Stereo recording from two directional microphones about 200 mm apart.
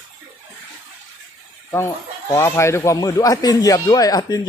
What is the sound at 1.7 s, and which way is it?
Speech, 15° left (ahead or behind).